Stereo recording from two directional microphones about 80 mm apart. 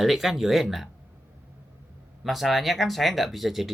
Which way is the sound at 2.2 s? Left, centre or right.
Centre.